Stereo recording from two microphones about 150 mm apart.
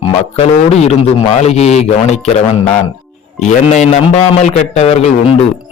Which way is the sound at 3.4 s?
50° left (ahead or behind).